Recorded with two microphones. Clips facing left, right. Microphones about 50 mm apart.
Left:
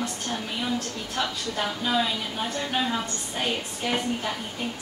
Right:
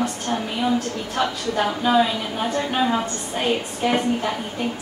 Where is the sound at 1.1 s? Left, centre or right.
Right.